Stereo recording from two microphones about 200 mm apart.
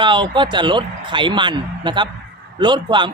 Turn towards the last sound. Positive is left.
turn(degrees=-25)  # may be behind; listen again after turning